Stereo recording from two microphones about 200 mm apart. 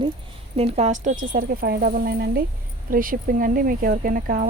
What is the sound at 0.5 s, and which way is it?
Speech, 30° right (ahead or behind).